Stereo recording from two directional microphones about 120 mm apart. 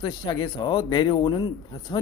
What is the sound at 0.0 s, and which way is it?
Speech, 35° left (ahead or behind).